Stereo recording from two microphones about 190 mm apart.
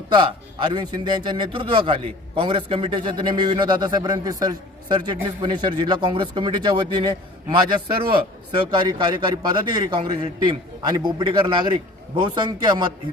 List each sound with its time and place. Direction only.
0.1 s a man's voice: 25° right (ahead or behind)